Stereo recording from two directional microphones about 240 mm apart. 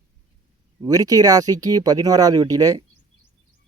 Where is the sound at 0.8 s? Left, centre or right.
Centre.